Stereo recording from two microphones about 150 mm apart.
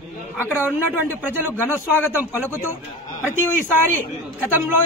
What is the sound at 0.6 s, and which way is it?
Speech, 15° right (ahead or behind).